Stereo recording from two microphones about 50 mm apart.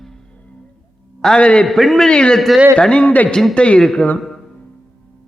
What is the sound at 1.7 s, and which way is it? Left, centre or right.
Speech, centre.